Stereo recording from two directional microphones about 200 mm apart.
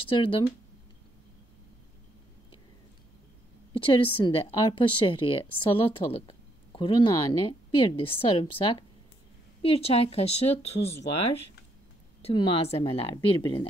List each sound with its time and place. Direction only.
0.1 s speech: 25° left (ahead or behind)
3.7 s a woman's voice: 25° left (ahead or behind)
12.2 s speech: 25° left (ahead or behind)